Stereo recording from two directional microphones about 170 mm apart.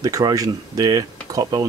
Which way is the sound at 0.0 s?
20° right (ahead or behind).